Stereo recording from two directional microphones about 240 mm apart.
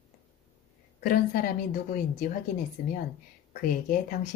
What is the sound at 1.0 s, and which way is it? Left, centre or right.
Speech, left.